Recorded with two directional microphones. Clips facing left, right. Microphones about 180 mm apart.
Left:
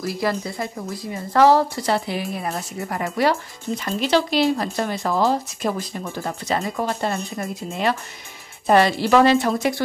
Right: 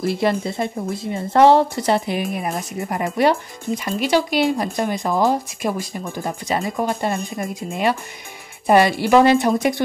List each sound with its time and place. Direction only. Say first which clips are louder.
0.0 s speech: right 4 dB; 25° right (ahead or behind)